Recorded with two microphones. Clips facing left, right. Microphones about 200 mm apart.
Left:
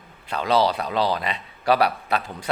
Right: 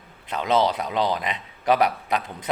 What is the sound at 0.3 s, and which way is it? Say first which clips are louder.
A man's voice: left 1 dB; 20° right (ahead or behind).